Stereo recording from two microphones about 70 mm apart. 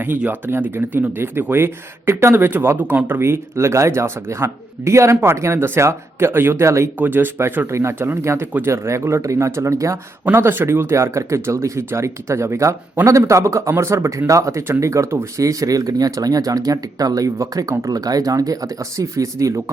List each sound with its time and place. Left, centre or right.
0.3 s speech: right
7.0 s speech: right
10.3 s speech: right